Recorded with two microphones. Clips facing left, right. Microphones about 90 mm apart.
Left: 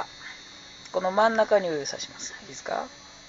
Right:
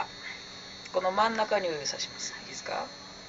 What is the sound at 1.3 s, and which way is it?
Speech, 40° left (ahead or behind).